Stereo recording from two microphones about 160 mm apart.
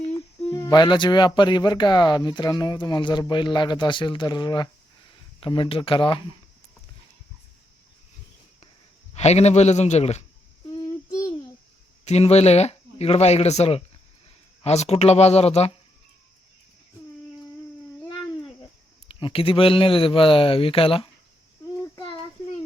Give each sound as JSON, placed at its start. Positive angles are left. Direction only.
{"t": 0.5, "sound": "speech", "side_deg": 25}
{"t": 9.1, "sound": "a man's voice", "side_deg": 40}
{"t": 12.0, "sound": "speech", "side_deg": 40}
{"t": 19.0, "sound": "speech", "side_deg": 35}